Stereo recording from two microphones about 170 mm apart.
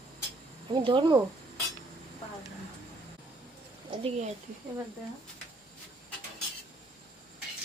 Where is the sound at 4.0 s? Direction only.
40° right (ahead or behind).